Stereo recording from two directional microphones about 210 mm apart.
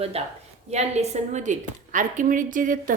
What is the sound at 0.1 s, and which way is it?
A woman's voice, 30° right (ahead or behind).